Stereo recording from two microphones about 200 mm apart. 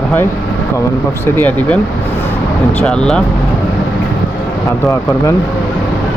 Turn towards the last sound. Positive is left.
turn(degrees=15)  # may be behind; listen again after turning